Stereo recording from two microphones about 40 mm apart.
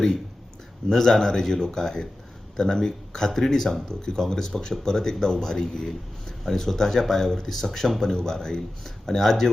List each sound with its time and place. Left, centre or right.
0.9 s speech: centre
8.1 s speech: centre